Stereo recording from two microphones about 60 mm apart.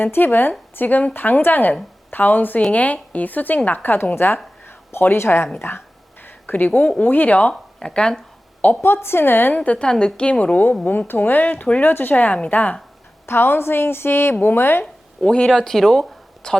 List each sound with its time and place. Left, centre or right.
0.0 s a woman's voice: left
6.2 s a sound: left
6.8 s speech: centre
7.5 s speech: centre
8.8 s a woman's voice: left
9.6 s a woman's voice: centre
13.2 s a woman's voice: left
15.2 s a woman's voice: centre